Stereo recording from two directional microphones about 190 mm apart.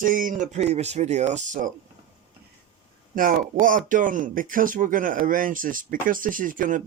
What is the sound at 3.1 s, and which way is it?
Speech, 45° right (ahead or behind).